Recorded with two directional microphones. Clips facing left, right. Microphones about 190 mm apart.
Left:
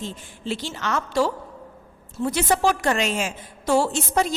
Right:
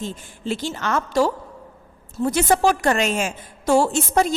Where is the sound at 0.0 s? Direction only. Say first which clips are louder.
Right 3 dB; 45° right (ahead or behind).